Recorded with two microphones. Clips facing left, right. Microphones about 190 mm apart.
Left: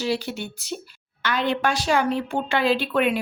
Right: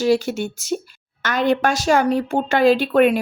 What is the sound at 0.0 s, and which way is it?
A woman's voice, 45° right (ahead or behind).